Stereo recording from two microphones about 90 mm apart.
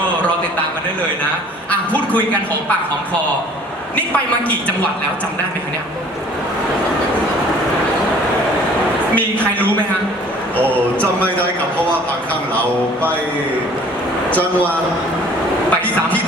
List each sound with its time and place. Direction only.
1.7 s a man's voice: 15° left (ahead or behind)
3.9 s a woman's voice: 15° left (ahead or behind)
9.1 s a woman's voice: 15° left (ahead or behind)
15.7 s a sound: 15° left (ahead or behind)